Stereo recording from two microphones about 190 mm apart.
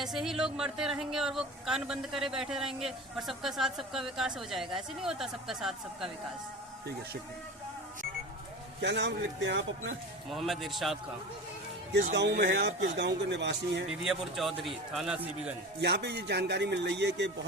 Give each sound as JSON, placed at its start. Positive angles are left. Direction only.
{"t": 0.0, "sound": "speech", "side_deg": 0}
{"t": 8.8, "sound": "speech", "side_deg": -65}
{"t": 10.2, "sound": "speech", "side_deg": 0}
{"t": 12.1, "sound": "speech", "side_deg": -65}
{"t": 14.0, "sound": "speech", "side_deg": 0}
{"t": 15.8, "sound": "a man's voice", "side_deg": -60}